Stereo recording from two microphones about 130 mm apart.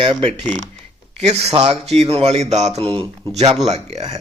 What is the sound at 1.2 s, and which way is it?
A man's voice, 55° right (ahead or behind).